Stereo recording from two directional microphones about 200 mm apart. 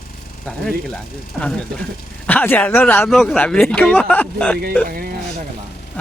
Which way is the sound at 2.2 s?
10° left (ahead or behind).